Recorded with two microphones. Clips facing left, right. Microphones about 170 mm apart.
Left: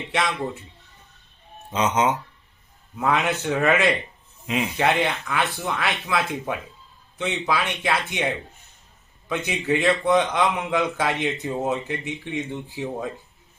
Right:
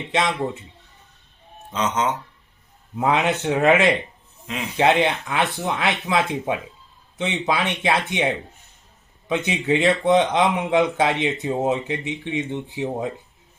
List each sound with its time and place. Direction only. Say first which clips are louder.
0.1 s speech: right 3 dB; 20° right (ahead or behind)
1.7 s speech: left 2 dB; 10° left (ahead or behind)
2.9 s speech: right 2 dB; 20° right (ahead or behind)
9.5 s speech: right 2 dB; 20° right (ahead or behind)